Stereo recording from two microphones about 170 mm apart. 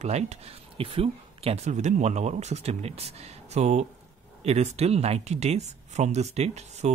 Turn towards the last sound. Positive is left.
turn(degrees=-40)  # may be behind; listen again after turning